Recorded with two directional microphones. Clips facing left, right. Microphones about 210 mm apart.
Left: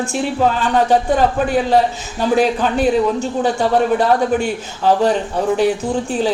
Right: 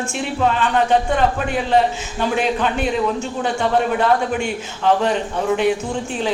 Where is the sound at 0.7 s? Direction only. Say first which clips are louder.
Left 3 dB; 35° left (ahead or behind).